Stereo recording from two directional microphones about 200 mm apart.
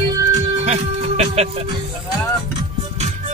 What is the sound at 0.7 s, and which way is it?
Speech, 35° right (ahead or behind).